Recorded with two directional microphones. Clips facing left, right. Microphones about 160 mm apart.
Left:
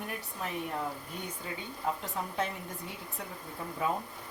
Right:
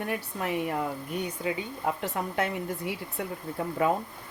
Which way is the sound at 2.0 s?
85° right.